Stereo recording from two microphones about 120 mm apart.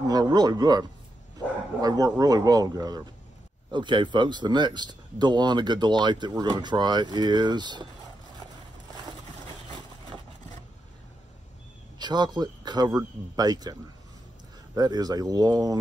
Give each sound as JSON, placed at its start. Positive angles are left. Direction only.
{"t": 0.0, "sound": "speech", "side_deg": -35}
{"t": 3.7, "sound": "speech", "side_deg": -40}
{"t": 12.0, "sound": "speech", "side_deg": -35}
{"t": 14.8, "sound": "speech", "side_deg": -35}